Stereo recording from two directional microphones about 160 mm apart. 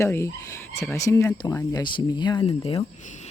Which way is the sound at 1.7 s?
30° left (ahead or behind).